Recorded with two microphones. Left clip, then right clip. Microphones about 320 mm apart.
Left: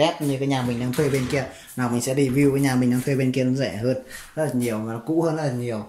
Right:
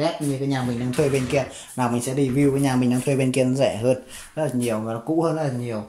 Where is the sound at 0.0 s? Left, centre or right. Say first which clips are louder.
Left 2 dB; centre.